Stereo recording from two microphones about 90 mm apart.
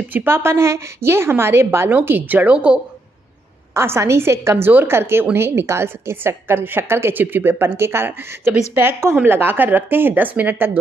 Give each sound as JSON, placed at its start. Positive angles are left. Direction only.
{"t": 0.1, "sound": "a woman's voice", "side_deg": -25}
{"t": 3.7, "sound": "a woman's voice", "side_deg": -30}